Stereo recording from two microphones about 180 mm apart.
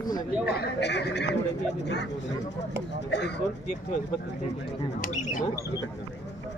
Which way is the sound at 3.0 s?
70° left (ahead or behind).